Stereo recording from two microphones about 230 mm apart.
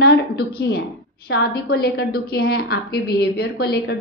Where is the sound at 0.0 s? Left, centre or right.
Left.